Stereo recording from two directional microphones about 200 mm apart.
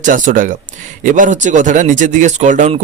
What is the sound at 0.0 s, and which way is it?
Speech, 40° right (ahead or behind).